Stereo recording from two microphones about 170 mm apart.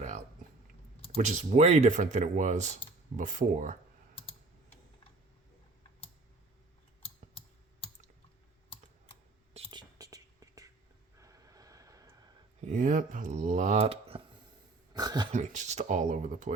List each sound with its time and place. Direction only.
1.1 s speech: 45° right (ahead or behind)
9.5 s whispering: 35° right (ahead or behind)
10.0 s whispering: 20° right (ahead or behind)
11.2 s vehicle: 20° right (ahead or behind)
12.6 s speech: 50° right (ahead or behind)
14.9 s speech: 25° right (ahead or behind)
15.3 s speech: 45° right (ahead or behind)